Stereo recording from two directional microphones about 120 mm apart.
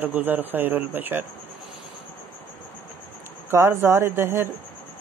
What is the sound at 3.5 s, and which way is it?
Speech, 25° right (ahead or behind).